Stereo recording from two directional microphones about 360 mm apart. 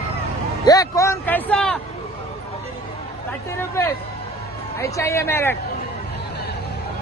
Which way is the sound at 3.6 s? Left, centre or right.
Centre.